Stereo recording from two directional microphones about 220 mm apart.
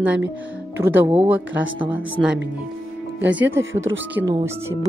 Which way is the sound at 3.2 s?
10° right (ahead or behind).